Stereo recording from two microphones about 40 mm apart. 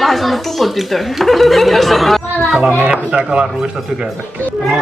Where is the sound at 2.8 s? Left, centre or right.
Right.